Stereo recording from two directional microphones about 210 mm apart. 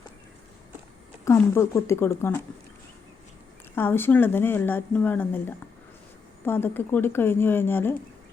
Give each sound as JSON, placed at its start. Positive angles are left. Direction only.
{"t": 1.2, "sound": "a woman's voice", "side_deg": 10}
{"t": 3.8, "sound": "a woman's voice", "side_deg": 10}